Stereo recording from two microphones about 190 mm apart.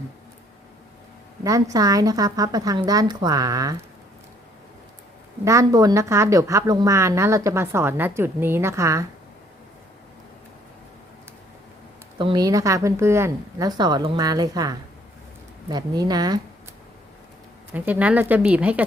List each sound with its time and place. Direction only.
1.5 s a woman's voice: 15° right (ahead or behind)
5.5 s a woman's voice: 15° right (ahead or behind)
12.2 s a woman's voice: 20° right (ahead or behind)
17.7 s a woman's voice: 10° right (ahead or behind)